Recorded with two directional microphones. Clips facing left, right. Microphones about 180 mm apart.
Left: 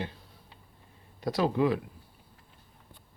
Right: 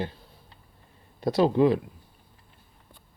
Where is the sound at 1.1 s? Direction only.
30° right (ahead or behind).